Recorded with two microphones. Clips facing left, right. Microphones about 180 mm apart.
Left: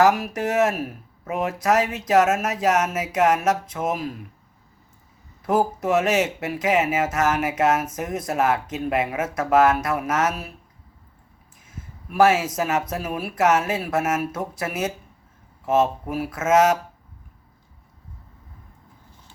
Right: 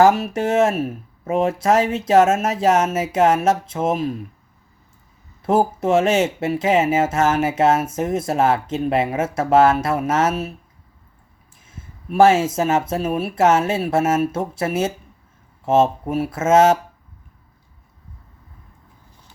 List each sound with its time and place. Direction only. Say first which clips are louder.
0.0 s speech: right 4 dB; 25° right (ahead or behind)
5.5 s speech: right 3 dB; 25° right (ahead or behind)
11.7 s speech: right 7 dB; 25° right (ahead or behind)